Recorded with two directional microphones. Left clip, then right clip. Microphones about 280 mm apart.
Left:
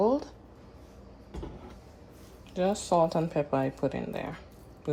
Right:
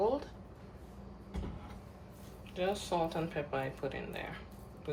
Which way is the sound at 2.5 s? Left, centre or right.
Left.